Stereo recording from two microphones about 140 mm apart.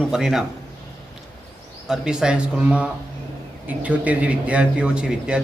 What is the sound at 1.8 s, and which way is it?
A man's voice, 5° right (ahead or behind).